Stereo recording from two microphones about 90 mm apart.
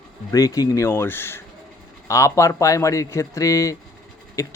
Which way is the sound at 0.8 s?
25° left (ahead or behind).